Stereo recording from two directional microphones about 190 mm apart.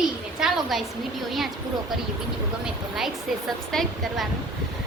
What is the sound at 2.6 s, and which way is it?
A woman's voice, centre (ahead or behind).